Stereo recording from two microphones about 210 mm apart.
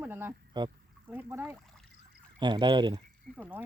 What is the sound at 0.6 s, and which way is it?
Speech, 20° right (ahead or behind).